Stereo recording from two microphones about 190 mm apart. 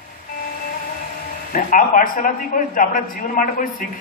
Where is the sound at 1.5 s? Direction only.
45° left (ahead or behind).